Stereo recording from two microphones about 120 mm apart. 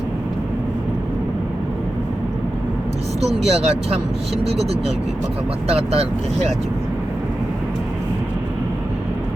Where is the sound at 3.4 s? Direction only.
60° right (ahead or behind).